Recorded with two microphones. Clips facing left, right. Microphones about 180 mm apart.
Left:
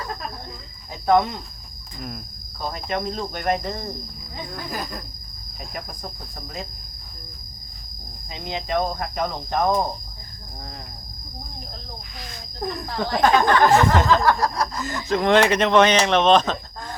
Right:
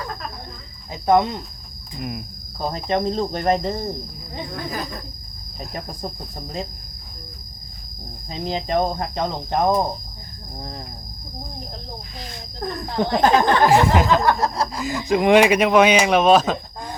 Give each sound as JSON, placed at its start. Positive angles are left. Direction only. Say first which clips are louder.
{"t": 1.0, "sound": "cricket", "louder": "right 1 dB", "side_deg": -20}
{"t": 2.0, "sound": "speech", "louder": "right 5 dB", "side_deg": -10}
{"t": 2.6, "sound": "cricket", "louder": "right 5 dB", "side_deg": -35}
{"t": 8.3, "sound": "cricket", "louder": "right 3 dB", "side_deg": -35}
{"t": 12.8, "sound": "cricket", "louder": "right 2 dB", "side_deg": -20}
{"t": 13.7, "sound": "speech", "louder": "right 1 dB", "side_deg": -10}
{"t": 14.7, "sound": "speech", "louder": "right 3 dB", "side_deg": -15}